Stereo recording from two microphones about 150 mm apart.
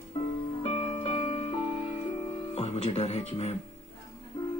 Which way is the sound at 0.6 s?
40° left (ahead or behind).